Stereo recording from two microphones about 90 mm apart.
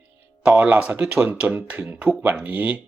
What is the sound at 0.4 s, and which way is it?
Speech, 15° right (ahead or behind).